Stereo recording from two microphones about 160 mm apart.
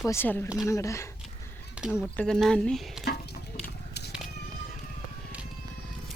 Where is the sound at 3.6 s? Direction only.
90° left.